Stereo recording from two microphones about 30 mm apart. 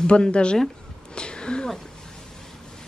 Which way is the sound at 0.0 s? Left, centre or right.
Left.